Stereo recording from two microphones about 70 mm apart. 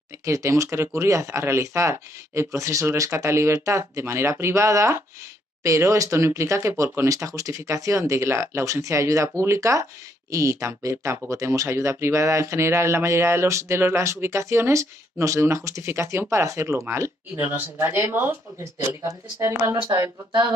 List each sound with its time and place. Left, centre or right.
0.2 s speech: right
19.0 s speech: right
19.7 s speech: right